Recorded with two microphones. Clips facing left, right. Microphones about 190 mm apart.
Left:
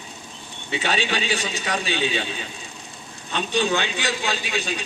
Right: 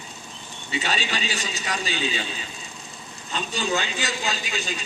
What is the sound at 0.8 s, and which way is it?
A man's voice, 55° left (ahead or behind).